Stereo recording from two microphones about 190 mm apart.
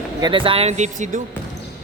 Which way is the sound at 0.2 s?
25° right (ahead or behind).